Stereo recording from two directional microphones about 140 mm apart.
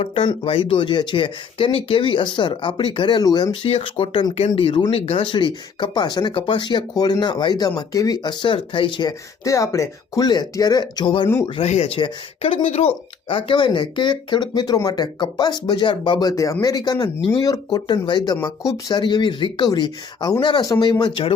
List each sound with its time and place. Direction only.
0.0 s speech: 40° left (ahead or behind)
11.9 s speech: 40° left (ahead or behind)
16.3 s speech: 25° left (ahead or behind)